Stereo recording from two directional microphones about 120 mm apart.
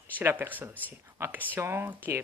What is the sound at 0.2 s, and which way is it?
Speech, 15° right (ahead or behind).